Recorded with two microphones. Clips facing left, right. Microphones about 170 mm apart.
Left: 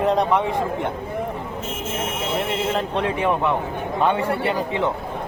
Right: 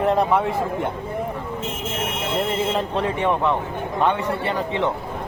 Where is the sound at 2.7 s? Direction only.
Centre (ahead or behind).